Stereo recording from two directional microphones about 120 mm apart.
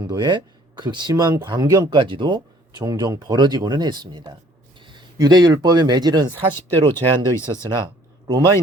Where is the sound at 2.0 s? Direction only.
40° right (ahead or behind).